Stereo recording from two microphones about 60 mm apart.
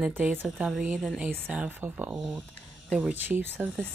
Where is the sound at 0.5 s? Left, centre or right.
Centre.